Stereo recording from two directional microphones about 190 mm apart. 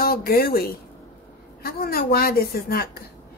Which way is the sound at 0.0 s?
50° left (ahead or behind).